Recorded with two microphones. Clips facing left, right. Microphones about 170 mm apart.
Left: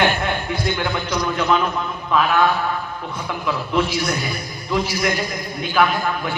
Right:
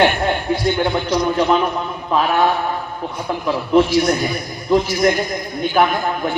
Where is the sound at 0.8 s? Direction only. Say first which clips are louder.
Right 5 dB; 35° right (ahead or behind).